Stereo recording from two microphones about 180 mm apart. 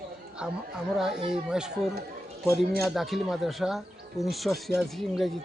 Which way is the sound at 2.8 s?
Centre (ahead or behind).